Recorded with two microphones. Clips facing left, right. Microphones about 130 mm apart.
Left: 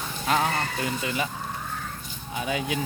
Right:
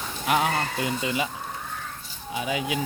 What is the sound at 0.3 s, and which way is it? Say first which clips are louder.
Speech: right 1 dB; 15° right (ahead or behind).